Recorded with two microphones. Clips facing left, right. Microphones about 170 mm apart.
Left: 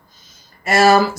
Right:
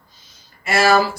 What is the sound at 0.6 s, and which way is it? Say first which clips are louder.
Speech: left 3 dB; 40° left (ahead or behind).